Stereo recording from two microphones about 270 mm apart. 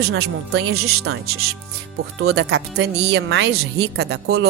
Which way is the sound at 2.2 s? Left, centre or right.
Right.